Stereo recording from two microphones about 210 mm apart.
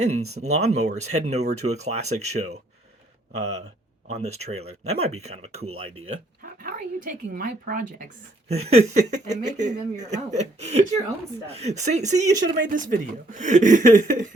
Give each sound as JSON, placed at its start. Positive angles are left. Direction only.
{"t": 0.1, "sound": "speech", "side_deg": -90}
{"t": 0.4, "sound": "speech", "side_deg": -30}
{"t": 6.4, "sound": "speech", "side_deg": -40}